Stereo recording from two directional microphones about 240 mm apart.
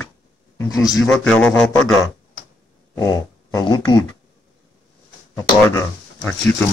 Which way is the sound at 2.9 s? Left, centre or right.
Centre.